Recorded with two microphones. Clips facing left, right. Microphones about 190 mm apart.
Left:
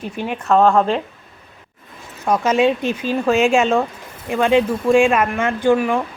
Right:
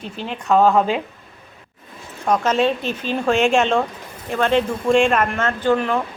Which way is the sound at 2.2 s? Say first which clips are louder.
Left 2 dB; 10° left (ahead or behind).